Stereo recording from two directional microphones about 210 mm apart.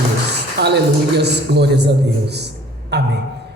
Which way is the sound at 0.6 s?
55° right (ahead or behind).